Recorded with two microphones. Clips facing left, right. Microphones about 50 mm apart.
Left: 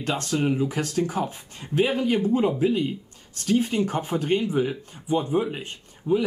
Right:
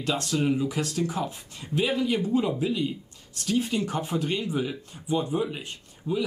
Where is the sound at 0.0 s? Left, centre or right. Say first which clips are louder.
Left 1 dB; left.